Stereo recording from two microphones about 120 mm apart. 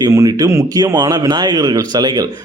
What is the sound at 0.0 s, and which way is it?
Speech, 25° right (ahead or behind).